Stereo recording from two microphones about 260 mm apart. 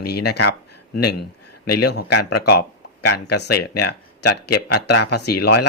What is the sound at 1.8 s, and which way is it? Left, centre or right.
Speech, left.